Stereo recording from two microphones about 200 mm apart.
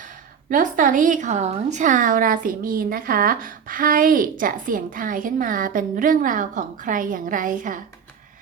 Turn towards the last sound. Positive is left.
turn(degrees=-40)  # may be behind; listen again after turning